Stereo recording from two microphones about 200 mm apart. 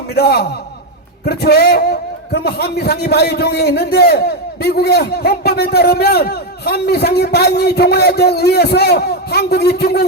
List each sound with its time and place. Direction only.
0.1 s a man's voice: 55° left (ahead or behind)